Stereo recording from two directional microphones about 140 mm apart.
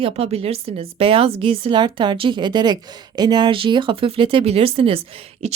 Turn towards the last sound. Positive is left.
turn(degrees=-45)  # may be behind; listen again after turning